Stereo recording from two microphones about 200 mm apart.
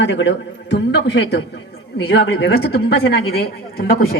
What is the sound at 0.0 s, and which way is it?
A man's voice, 65° left (ahead or behind).